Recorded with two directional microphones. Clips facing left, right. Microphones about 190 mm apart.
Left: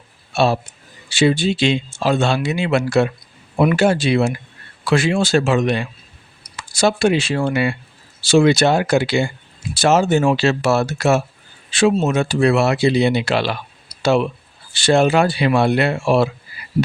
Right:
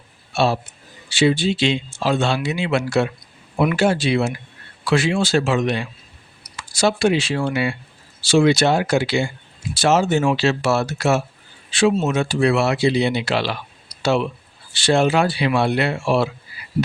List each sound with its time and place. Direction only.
1.1 s speech: 50° left (ahead or behind)
14.7 s speech: 50° left (ahead or behind)